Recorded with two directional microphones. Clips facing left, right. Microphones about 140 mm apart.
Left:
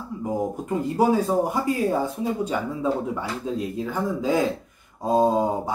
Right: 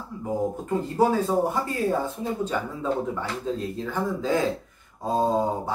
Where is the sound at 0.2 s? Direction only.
15° left (ahead or behind).